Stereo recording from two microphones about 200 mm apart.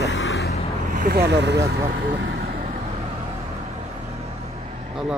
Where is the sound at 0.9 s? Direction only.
50° right (ahead or behind).